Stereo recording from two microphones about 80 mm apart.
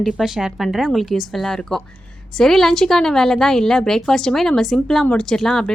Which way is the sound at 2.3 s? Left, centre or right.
Centre.